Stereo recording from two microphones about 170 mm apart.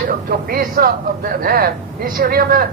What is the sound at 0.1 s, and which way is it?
Speech, 60° right (ahead or behind).